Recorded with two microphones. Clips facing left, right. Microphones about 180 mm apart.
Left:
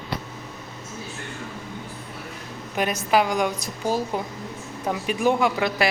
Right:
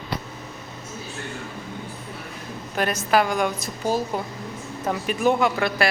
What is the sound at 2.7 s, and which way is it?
A woman's voice, 15° left (ahead or behind).